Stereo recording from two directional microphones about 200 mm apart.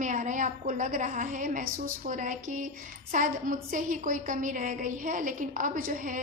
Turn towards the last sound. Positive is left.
turn(degrees=-40)  # may be behind; listen again after turning